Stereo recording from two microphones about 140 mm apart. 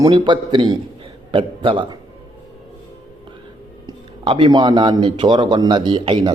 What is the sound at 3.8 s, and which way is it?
Speech, 35° right (ahead or behind).